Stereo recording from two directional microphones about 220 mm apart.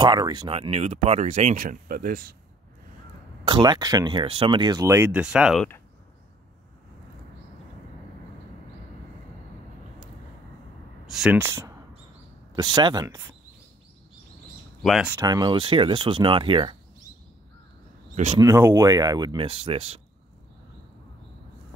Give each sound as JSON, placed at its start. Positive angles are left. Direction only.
{"t": 0.0, "sound": "speech", "side_deg": -20}
{"t": 3.4, "sound": "speech", "side_deg": -20}
{"t": 11.1, "sound": "speech", "side_deg": 0}
{"t": 12.7, "sound": "speech", "side_deg": -20}
{"t": 14.8, "sound": "speech", "side_deg": 0}
{"t": 15.1, "sound": "speech", "side_deg": -15}
{"t": 18.1, "sound": "speech", "side_deg": -30}
{"t": 18.4, "sound": "speech", "side_deg": -15}